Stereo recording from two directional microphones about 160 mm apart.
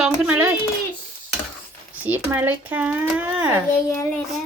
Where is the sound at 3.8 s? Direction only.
20° left (ahead or behind).